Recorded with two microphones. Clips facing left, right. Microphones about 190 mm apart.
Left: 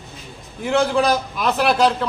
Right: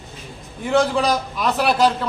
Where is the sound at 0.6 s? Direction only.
Centre (ahead or behind).